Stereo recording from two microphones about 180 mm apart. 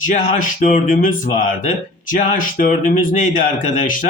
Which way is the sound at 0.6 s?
45° left (ahead or behind).